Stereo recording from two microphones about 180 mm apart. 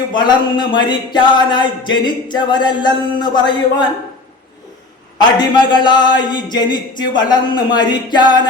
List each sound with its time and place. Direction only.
0.1 s a man's voice: 25° left (ahead or behind)
5.1 s a man's voice: 25° left (ahead or behind)